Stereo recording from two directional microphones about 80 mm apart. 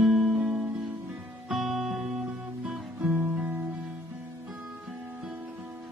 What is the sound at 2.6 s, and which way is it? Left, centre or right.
Guitar, centre.